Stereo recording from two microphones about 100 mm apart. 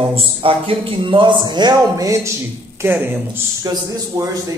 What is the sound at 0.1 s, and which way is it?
A man's voice, 65° right (ahead or behind).